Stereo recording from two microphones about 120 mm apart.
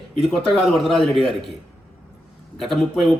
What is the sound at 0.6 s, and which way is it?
Speech, centre (ahead or behind).